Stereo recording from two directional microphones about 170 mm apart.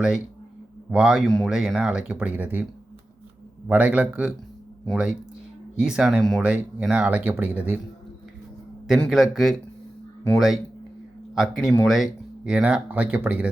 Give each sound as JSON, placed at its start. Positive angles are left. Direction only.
{"t": 0.9, "sound": "speech", "side_deg": -5}
{"t": 3.7, "sound": "speech", "side_deg": -10}
{"t": 8.9, "sound": "speech", "side_deg": 0}
{"t": 11.6, "sound": "speech", "side_deg": 15}
{"t": 11.9, "sound": "speech", "side_deg": 0}